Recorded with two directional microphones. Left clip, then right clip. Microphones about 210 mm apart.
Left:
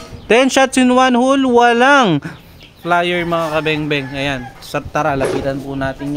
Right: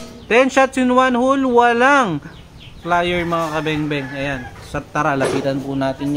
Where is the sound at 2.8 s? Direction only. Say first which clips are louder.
Left 3 dB; 35° left (ahead or behind); by 4.8 s 55° left (ahead or behind).